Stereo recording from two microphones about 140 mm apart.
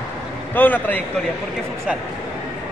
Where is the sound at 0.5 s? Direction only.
15° left (ahead or behind).